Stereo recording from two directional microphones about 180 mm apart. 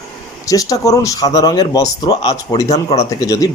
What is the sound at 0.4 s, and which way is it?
Speech, 20° left (ahead or behind).